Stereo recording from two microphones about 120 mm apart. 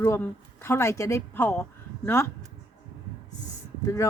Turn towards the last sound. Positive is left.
turn(degrees=25)  # may be behind; listen again after turning